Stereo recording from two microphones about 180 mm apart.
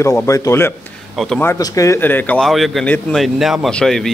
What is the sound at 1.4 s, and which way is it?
Speech, 15° left (ahead or behind).